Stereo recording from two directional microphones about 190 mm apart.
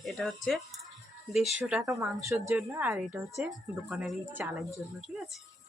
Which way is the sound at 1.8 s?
15° right (ahead or behind).